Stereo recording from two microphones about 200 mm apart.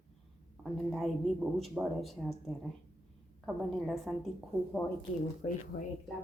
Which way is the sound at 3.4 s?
Centre (ahead or behind).